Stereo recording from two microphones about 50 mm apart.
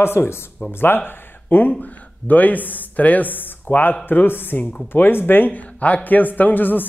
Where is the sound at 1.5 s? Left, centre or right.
Left.